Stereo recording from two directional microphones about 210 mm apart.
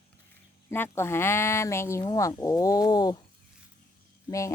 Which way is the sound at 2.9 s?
20° left (ahead or behind).